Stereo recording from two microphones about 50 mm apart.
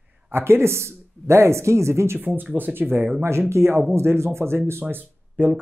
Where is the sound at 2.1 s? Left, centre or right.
Right.